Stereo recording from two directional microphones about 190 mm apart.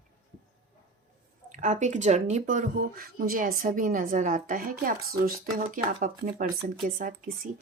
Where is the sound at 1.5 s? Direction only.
40° right (ahead or behind).